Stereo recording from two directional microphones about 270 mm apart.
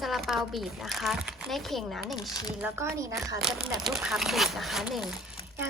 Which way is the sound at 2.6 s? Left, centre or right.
Centre.